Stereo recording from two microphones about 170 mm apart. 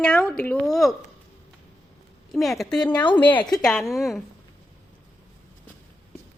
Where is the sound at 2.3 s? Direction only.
Centre (ahead or behind).